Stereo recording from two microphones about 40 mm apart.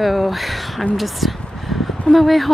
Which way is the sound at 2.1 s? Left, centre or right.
Centre.